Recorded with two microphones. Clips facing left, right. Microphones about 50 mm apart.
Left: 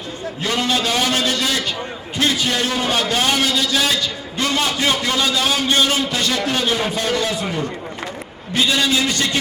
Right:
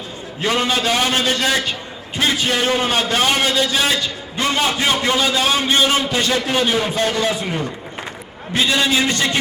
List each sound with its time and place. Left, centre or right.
0.4 s a man's voice: right
8.6 s a man's voice: right